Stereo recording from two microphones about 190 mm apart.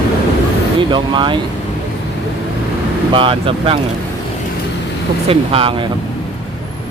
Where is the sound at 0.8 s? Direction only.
25° right (ahead or behind).